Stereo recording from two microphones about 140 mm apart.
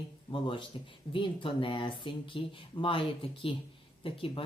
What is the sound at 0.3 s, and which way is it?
Speech, 40° left (ahead or behind).